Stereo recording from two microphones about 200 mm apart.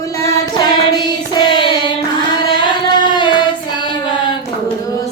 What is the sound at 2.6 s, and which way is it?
Singing, 20° left (ahead or behind).